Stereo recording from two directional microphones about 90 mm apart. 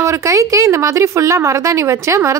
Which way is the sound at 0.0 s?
35° right (ahead or behind).